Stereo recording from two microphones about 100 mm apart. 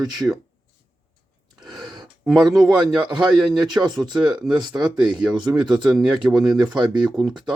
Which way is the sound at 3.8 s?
20° right (ahead or behind).